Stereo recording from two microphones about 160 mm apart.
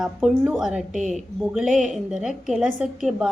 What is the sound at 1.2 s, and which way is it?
A woman's voice, centre (ahead or behind).